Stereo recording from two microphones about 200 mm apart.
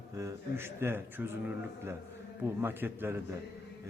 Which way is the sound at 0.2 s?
15° right (ahead or behind).